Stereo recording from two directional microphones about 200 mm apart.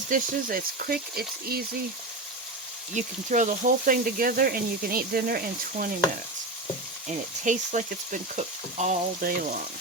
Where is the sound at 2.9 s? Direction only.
40° right (ahead or behind).